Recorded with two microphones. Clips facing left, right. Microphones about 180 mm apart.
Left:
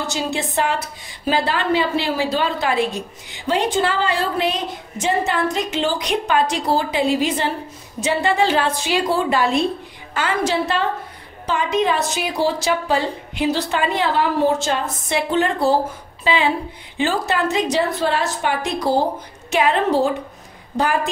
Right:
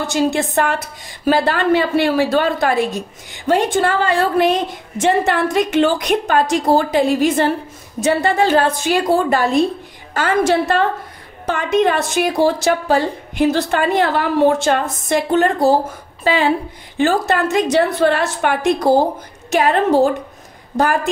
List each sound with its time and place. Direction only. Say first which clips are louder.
0.0 s a woman's voice: right 6 dB; 50° right (ahead or behind)